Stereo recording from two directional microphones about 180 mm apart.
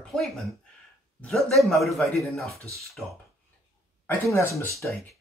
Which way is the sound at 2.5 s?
15° right (ahead or behind).